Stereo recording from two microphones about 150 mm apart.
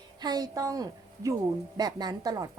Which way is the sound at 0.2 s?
25° right (ahead or behind).